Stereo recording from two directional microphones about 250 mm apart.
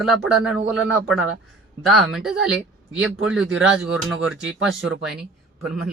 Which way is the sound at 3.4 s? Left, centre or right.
Right.